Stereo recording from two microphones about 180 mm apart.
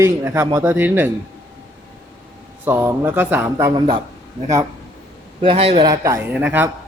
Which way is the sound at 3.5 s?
25° right (ahead or behind).